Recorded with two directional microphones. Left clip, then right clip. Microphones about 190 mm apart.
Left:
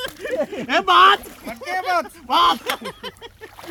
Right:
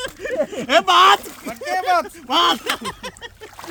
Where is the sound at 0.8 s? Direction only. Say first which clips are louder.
Left 1 dB; 60° right (ahead or behind).